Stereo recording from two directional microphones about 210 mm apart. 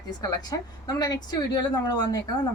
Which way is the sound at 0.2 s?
20° left (ahead or behind).